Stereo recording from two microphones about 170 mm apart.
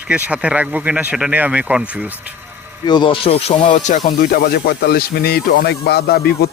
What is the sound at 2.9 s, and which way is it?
Speech, 30° left (ahead or behind).